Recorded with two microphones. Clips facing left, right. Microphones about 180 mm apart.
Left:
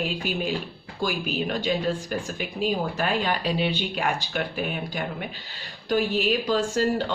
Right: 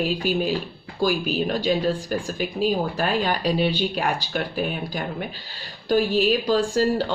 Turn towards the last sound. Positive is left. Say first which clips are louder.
# right 3 dB
turn(degrees=-35)  # may be behind; listen again after turning